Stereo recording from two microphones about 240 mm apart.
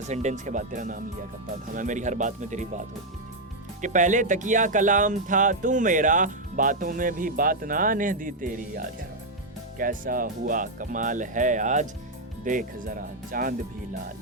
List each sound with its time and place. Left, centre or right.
0.1 s speech: right